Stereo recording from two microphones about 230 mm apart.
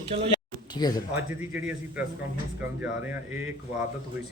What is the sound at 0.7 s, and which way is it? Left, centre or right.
Speech, centre.